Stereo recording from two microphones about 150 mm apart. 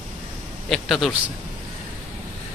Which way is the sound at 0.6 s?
Centre (ahead or behind).